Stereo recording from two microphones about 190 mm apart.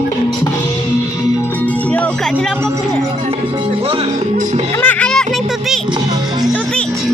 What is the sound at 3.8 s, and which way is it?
Music, 30° right (ahead or behind).